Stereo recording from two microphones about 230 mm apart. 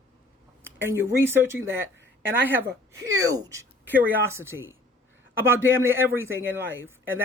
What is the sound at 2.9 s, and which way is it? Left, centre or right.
Speech, centre.